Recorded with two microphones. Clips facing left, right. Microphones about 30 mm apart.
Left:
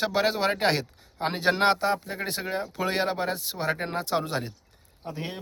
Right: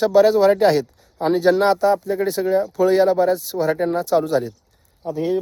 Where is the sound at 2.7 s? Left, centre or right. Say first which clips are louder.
Right 11 dB; left.